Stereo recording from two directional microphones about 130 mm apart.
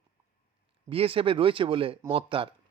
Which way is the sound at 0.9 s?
45° right (ahead or behind).